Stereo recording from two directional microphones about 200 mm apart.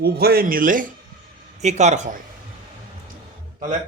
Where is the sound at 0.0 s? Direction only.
50° right (ahead or behind).